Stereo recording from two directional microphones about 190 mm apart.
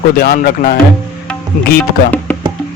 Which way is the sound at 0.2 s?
55° left (ahead or behind).